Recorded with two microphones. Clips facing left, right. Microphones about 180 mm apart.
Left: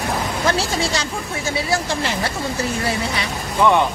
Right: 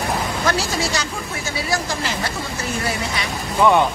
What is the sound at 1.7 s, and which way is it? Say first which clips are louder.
Speech: even; 30° left (ahead or behind).